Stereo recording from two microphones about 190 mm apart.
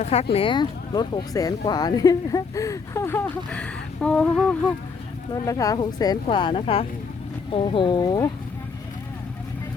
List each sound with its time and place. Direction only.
0.0 s speech: 35° left (ahead or behind); by 4.5 s 5° left (ahead or behind)
5.3 s speech: 20° left (ahead or behind)